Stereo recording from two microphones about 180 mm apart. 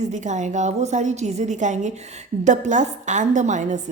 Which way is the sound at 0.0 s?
40° right (ahead or behind).